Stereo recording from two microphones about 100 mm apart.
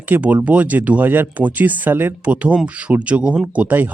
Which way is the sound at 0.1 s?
15° right (ahead or behind).